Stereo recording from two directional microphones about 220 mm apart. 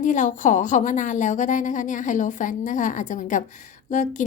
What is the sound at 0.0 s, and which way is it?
A woman's voice, 35° left (ahead or behind).